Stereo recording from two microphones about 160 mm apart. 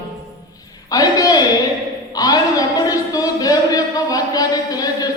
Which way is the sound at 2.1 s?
20° left (ahead or behind).